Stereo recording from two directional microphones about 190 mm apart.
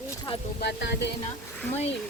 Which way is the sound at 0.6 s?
60° left (ahead or behind).